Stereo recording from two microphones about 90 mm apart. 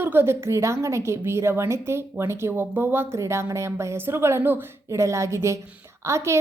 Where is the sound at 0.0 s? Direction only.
25° right (ahead or behind).